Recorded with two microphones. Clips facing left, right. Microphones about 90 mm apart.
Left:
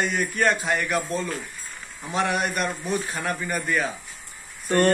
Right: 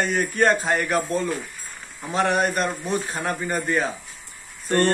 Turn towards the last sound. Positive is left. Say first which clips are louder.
# even
turn(degrees=10)  # may be behind; listen again after turning